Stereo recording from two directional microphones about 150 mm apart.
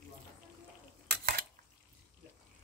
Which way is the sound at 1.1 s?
90° right.